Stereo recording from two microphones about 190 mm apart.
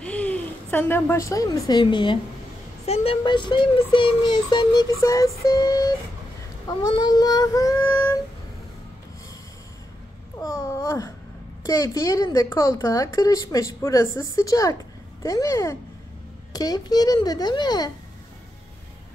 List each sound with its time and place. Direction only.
0.0 s a woman's voice: 5° left (ahead or behind); by 2.1 s 25° left (ahead or behind)
2.9 s child singing: 30° left (ahead or behind)
10.4 s babbling: 15° left (ahead or behind)
11.6 s speech: 20° left (ahead or behind)
16.5 s child singing: 20° left (ahead or behind)